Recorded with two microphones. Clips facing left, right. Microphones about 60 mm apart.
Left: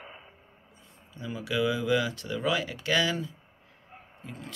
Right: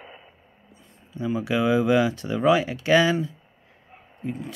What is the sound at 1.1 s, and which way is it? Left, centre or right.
Speech, right.